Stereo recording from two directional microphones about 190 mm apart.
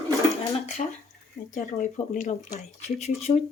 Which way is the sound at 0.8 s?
35° left (ahead or behind).